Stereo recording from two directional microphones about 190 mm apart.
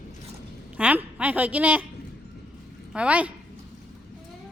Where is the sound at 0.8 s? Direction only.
10° right (ahead or behind).